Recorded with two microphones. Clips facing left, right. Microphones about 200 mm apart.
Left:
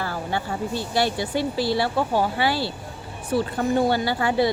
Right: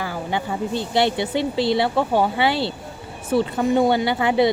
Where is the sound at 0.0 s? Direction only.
15° right (ahead or behind).